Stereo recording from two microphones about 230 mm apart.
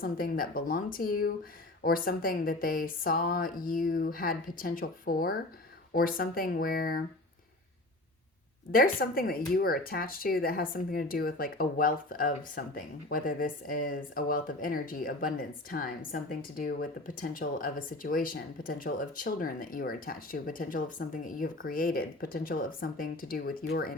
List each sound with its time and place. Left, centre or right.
0.0 s speech: left
8.7 s speech: left